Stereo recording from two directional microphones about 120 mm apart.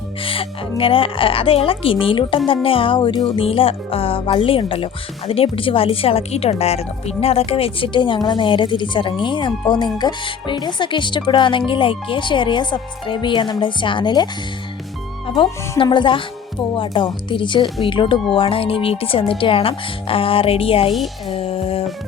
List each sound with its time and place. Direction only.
0.2 s a woman's voice: 50° left (ahead or behind)
3.4 s speech: 50° left (ahead or behind)
15.8 s speech: 40° left (ahead or behind)
21.2 s music: 50° left (ahead or behind)